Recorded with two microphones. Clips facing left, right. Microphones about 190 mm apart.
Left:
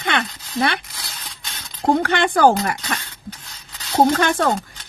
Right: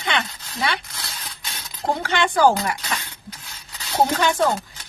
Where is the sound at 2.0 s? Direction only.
55° left (ahead or behind).